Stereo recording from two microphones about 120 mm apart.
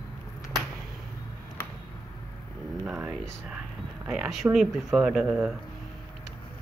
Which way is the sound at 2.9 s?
5° right (ahead or behind).